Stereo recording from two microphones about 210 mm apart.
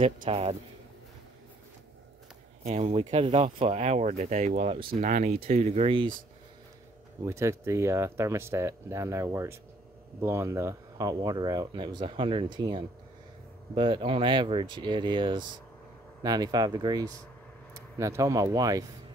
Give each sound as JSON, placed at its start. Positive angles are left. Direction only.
{"t": 0.0, "sound": "speech", "side_deg": -25}
{"t": 2.6, "sound": "speech", "side_deg": -30}
{"t": 7.2, "sound": "speech", "side_deg": -15}